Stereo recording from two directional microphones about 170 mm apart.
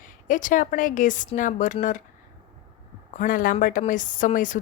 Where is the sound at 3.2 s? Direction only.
55° left (ahead or behind).